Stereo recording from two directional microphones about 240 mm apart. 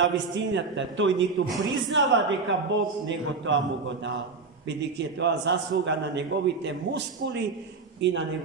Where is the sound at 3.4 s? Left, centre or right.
Right.